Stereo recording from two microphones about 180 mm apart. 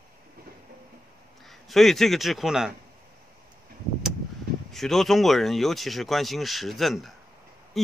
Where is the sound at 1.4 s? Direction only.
Centre (ahead or behind).